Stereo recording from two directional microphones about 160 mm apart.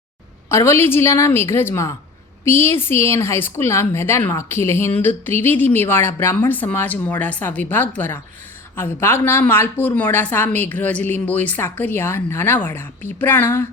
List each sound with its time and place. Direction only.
0.4 s speech: 15° left (ahead or behind)